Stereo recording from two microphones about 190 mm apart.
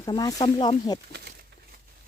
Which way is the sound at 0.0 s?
20° left (ahead or behind).